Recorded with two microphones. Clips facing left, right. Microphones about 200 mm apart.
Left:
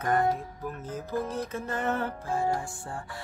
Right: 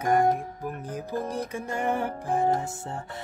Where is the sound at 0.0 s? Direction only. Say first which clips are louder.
Right 3 dB; 15° right (ahead or behind).